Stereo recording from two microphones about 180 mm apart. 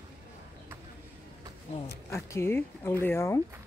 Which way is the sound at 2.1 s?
15° left (ahead or behind).